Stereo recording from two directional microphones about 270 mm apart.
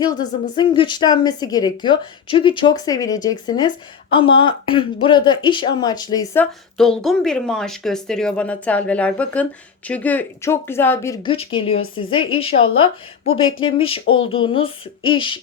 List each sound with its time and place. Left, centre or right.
0.0 s a woman's voice: centre